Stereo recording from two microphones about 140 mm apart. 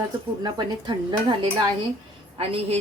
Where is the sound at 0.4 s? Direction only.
30° right (ahead or behind).